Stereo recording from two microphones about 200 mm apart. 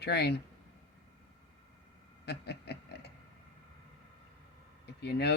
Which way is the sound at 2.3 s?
55° left (ahead or behind).